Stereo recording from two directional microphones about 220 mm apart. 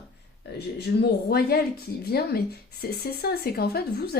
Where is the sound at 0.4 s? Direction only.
50° left (ahead or behind).